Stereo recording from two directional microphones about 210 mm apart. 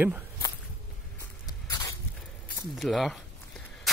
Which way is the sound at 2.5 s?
Centre (ahead or behind).